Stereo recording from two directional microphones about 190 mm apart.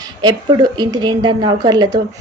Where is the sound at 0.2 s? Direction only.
20° right (ahead or behind).